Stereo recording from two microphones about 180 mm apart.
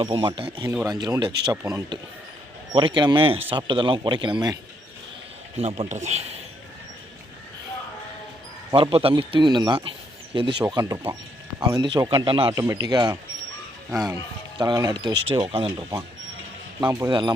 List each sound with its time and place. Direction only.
0.0 s a man's voice: 25° right (ahead or behind)
0.7 s speech: 10° right (ahead or behind)
0.9 s a man's voice: 25° right (ahead or behind)
5.5 s a man's voice: 35° right (ahead or behind)
8.7 s a man's voice: 30° right (ahead or behind)
16.8 s a man's voice: 15° right (ahead or behind)